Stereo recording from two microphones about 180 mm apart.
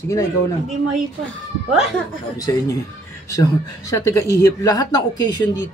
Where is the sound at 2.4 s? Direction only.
20° left (ahead or behind).